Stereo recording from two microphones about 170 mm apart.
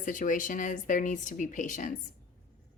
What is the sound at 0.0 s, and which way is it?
Speech, 50° left (ahead or behind).